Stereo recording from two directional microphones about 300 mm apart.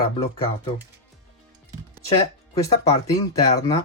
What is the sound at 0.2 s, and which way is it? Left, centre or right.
Speech, centre.